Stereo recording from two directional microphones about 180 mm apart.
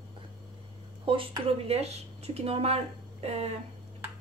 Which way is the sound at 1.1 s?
30° right (ahead or behind).